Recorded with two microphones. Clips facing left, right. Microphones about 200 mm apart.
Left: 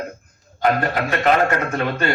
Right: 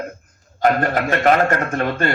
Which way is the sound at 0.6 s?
45° right (ahead or behind).